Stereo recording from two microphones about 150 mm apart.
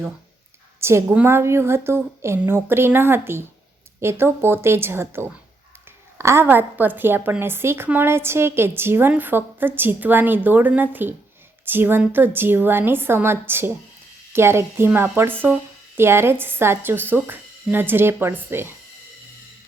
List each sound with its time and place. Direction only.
0.8 s a woman's voice: 15° right (ahead or behind)